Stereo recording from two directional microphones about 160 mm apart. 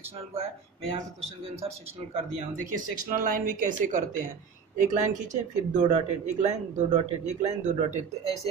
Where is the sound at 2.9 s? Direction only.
60° right (ahead or behind).